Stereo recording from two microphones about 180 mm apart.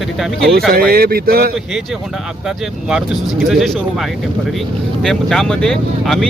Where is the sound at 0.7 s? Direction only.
55° right (ahead or behind).